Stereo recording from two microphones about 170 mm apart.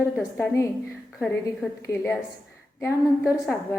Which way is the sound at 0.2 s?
15° left (ahead or behind).